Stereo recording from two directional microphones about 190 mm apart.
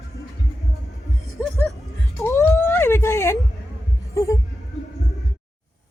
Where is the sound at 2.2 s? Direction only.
15° left (ahead or behind).